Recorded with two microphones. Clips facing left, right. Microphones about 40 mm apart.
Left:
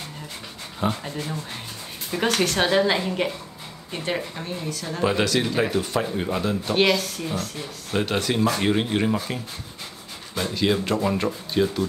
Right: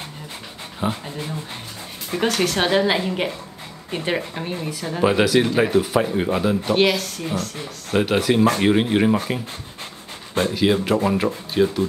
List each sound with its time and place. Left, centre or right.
0.7 s speech: centre
2.6 s speech: centre
4.9 s speech: centre
7.9 s speech: centre
10.5 s speech: centre